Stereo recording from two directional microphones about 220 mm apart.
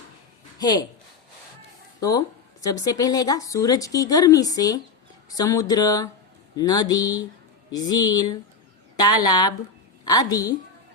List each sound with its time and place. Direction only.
0.6 s speech: 20° left (ahead or behind)
2.0 s a sound: 15° left (ahead or behind)
2.8 s speech: 15° left (ahead or behind)